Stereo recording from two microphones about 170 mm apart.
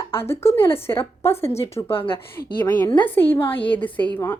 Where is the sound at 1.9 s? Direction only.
30° left (ahead or behind).